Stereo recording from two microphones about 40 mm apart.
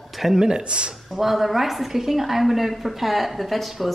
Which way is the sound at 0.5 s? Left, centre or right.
Right.